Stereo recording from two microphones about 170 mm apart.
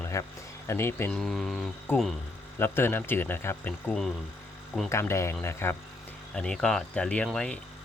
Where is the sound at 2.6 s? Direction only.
15° left (ahead or behind).